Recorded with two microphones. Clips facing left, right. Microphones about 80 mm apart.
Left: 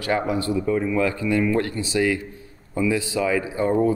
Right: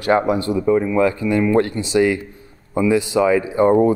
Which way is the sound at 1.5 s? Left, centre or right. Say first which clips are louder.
Right 6 dB; right.